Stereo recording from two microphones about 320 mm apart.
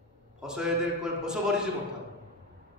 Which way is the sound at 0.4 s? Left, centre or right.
Centre.